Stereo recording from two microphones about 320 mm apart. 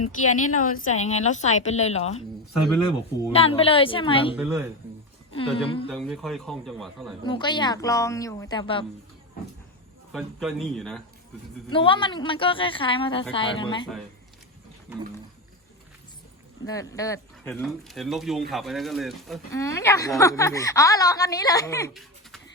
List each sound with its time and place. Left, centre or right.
0.0 s a woman's voice: left
1.0 s speech: left
3.3 s speech: centre
4.4 s speech: centre
5.3 s speech: centre
5.9 s speech: centre
7.3 s speech: centre
10.1 s speech: centre
11.7 s speech: centre
16.6 s speech: centre